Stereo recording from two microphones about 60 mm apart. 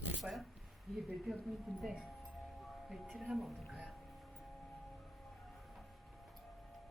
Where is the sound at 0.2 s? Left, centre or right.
Centre.